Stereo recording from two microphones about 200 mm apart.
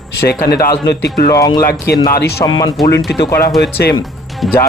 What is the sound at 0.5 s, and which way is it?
Speech, 50° left (ahead or behind).